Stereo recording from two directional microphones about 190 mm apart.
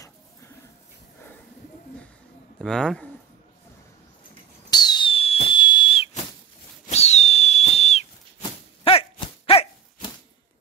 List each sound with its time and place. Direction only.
2.6 s speech: 5° left (ahead or behind)
4.6 s whistle: 20° left (ahead or behind)
9.5 s dog: 30° left (ahead or behind)